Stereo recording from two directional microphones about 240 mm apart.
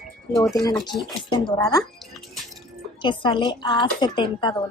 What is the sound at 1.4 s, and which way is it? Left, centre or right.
Speech, centre.